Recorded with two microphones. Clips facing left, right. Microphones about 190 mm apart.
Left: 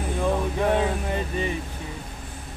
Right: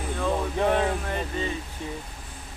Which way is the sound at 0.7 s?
15° left (ahead or behind).